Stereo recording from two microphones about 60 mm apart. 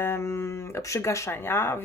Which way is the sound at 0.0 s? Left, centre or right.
Left.